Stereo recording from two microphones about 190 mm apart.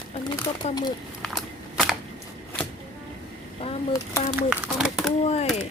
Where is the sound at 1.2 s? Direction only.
Centre (ahead or behind).